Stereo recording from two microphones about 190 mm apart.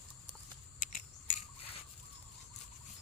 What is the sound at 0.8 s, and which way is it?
Mechanisms, 45° left (ahead or behind).